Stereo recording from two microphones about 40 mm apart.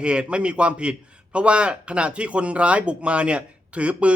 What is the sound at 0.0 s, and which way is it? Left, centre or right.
A man's voice, right.